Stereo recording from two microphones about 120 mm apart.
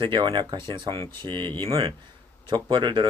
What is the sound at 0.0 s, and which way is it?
Speech, 40° right (ahead or behind).